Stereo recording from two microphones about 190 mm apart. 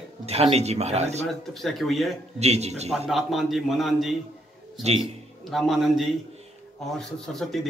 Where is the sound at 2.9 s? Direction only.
Centre (ahead or behind).